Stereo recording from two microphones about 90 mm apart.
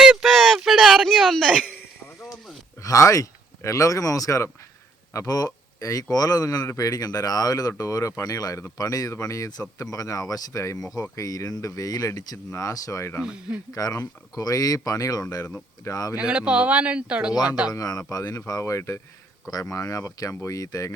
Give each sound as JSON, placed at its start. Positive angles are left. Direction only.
{"t": 0.0, "sound": "a sound", "side_deg": -5}
{"t": 0.3, "sound": "a sound", "side_deg": 5}
{"t": 2.8, "sound": "speech", "side_deg": 40}
{"t": 13.2, "sound": "speech", "side_deg": -10}
{"t": 13.7, "sound": "speech", "side_deg": 40}
{"t": 16.1, "sound": "speech", "side_deg": -10}
{"t": 17.3, "sound": "speech", "side_deg": 50}